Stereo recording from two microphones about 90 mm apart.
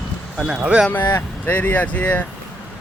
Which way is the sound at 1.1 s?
25° left (ahead or behind).